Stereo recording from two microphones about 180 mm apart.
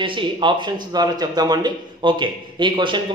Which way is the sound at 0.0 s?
25° right (ahead or behind).